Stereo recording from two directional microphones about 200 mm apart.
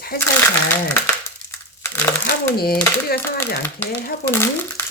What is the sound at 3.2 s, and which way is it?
Speech, 10° left (ahead or behind).